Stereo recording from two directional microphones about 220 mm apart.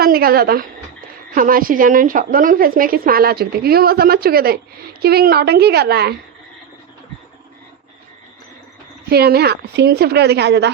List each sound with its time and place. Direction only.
0.0 s a woman's voice: 45° right (ahead or behind)
9.0 s a woman's voice: 45° right (ahead or behind)